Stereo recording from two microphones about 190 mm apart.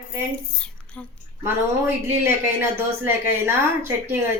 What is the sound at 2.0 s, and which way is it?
A woman's voice, 10° right (ahead or behind).